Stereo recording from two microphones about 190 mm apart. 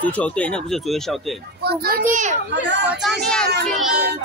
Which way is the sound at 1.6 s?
55° right (ahead or behind).